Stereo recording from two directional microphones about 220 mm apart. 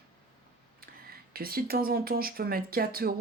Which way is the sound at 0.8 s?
45° right (ahead or behind).